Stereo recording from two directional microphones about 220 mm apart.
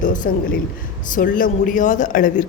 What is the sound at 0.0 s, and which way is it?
A man's voice, 35° left (ahead or behind).